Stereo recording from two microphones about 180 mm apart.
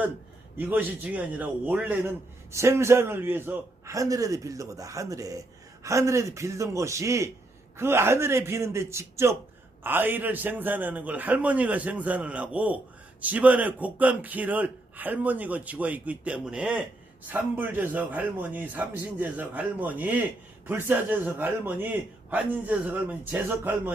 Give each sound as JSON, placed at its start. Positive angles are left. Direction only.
{"t": 0.6, "sound": "a man's voice", "side_deg": -10}